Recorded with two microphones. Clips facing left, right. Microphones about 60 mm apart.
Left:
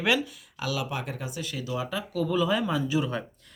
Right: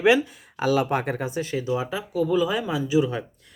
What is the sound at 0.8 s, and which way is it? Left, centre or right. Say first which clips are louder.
Speech: right 8 dB; right.